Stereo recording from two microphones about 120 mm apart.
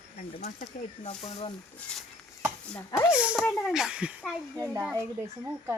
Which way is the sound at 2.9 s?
25° left (ahead or behind).